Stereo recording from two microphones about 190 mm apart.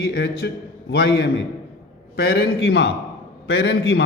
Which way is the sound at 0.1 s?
60° left (ahead or behind).